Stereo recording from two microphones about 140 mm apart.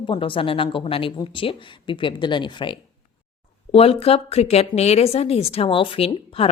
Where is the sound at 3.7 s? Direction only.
45° left (ahead or behind).